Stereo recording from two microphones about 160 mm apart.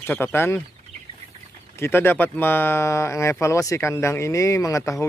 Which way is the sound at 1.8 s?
15° left (ahead or behind).